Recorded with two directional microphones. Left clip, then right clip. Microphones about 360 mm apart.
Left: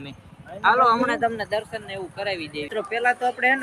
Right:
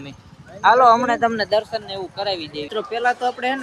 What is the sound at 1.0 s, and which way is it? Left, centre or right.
Speech, centre.